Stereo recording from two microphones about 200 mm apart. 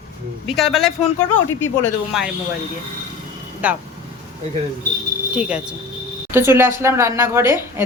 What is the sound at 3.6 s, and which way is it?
Speech, 5° right (ahead or behind).